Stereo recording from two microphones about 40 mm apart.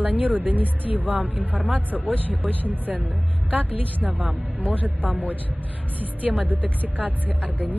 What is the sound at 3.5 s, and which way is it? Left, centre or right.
Speech, right.